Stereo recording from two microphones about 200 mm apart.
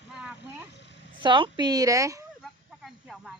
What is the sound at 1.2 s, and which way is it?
Speech, 25° right (ahead or behind).